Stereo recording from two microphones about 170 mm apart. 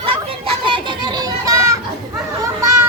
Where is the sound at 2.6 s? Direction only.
20° right (ahead or behind).